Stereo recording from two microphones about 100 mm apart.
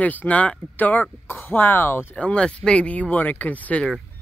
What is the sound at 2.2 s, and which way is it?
Speech, 10° left (ahead or behind).